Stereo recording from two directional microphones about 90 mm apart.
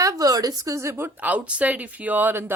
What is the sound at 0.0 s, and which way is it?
A woman's voice, 45° right (ahead or behind).